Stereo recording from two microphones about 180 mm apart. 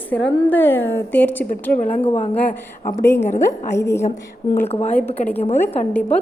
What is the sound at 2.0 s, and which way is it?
Speech, 35° left (ahead or behind).